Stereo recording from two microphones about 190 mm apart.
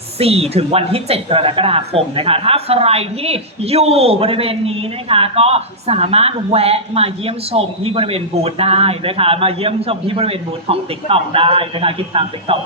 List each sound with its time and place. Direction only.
0.2 s speech: 30° right (ahead or behind)